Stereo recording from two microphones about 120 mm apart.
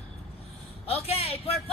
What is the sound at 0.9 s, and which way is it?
Speech, 60° left (ahead or behind).